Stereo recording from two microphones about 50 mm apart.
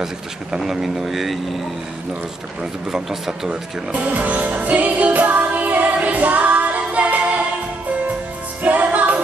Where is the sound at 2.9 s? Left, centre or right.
Centre.